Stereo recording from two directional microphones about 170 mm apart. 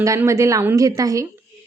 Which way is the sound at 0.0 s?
20° right (ahead or behind).